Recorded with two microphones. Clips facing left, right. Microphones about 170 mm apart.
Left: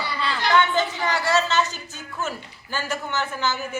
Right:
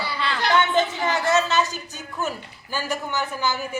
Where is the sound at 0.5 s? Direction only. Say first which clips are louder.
Even; 20° right (ahead or behind).